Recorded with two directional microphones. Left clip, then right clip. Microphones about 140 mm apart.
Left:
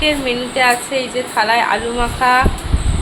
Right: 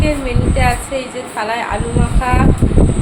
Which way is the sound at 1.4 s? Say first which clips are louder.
Left 5 dB; 35° left (ahead or behind).